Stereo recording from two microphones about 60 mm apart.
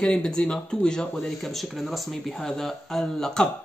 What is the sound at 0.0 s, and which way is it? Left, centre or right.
Speech, centre.